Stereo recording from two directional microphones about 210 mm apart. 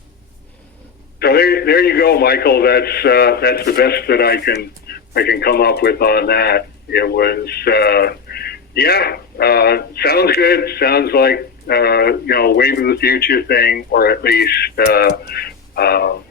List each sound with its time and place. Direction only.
1.2 s a man's voice: 50° left (ahead or behind)